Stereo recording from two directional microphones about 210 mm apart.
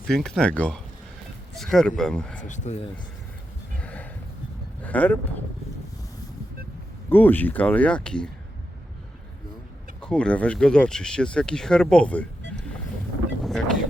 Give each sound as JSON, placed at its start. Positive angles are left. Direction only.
{"t": 0.1, "sound": "speech", "side_deg": 5}
{"t": 2.4, "sound": "speech", "side_deg": 35}
{"t": 3.8, "sound": "music", "side_deg": 5}
{"t": 4.8, "sound": "speech", "side_deg": 5}
{"t": 7.1, "sound": "speech", "side_deg": 10}
{"t": 10.0, "sound": "speech", "side_deg": 5}
{"t": 13.4, "sound": "vehicle", "side_deg": 0}